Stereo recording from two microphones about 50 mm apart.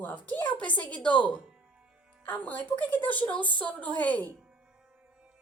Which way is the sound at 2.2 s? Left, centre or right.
Left.